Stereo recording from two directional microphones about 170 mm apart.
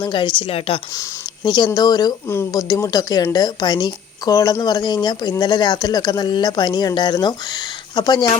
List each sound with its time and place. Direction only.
0.0 s speech: 30° left (ahead or behind)